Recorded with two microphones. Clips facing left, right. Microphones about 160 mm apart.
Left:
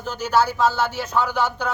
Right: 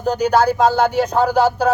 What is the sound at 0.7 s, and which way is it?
Speech, 40° right (ahead or behind).